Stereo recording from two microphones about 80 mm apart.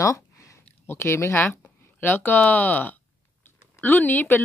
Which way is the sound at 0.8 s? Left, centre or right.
Left.